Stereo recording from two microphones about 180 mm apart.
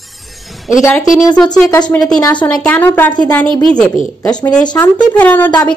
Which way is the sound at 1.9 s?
5° left (ahead or behind).